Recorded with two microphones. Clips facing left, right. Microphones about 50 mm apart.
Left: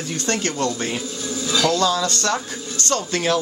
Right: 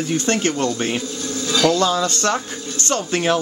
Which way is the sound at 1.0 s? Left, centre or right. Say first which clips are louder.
Right 2 dB; centre.